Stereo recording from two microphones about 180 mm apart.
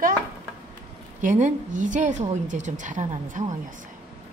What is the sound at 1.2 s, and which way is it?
A woman's voice, 45° right (ahead or behind).